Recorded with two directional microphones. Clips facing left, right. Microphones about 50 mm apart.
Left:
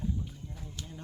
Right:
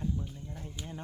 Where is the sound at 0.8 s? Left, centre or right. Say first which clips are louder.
Right 2 dB; centre.